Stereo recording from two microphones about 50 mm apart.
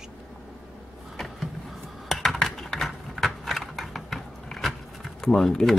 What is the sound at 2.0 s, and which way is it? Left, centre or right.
Computer keyboard, centre.